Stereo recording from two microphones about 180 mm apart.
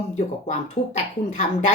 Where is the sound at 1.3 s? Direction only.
40° left (ahead or behind).